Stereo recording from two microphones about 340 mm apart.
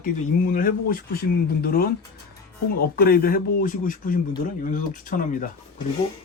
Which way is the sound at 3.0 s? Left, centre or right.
Left.